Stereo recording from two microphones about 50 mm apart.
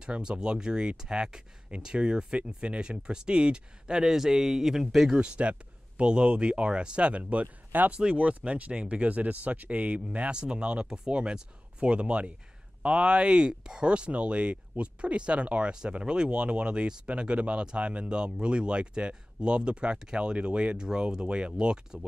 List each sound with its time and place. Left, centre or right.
0.0 s speech: centre
5.2 s speech: right